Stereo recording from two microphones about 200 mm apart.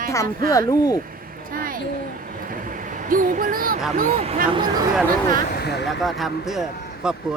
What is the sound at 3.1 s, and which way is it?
A woman's voice, 45° right (ahead or behind).